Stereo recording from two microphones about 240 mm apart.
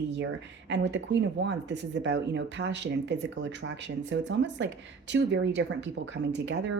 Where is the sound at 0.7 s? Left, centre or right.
Right.